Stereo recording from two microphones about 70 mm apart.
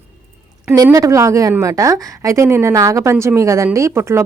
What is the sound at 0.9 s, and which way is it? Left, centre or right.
Speech, right.